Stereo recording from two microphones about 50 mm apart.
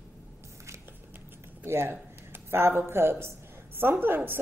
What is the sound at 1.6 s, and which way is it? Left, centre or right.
Speech, right.